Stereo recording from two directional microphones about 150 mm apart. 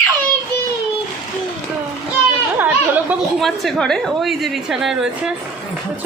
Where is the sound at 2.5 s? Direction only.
10° right (ahead or behind).